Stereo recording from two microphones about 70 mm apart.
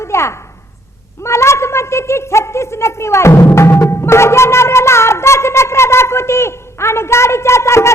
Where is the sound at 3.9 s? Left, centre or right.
Left.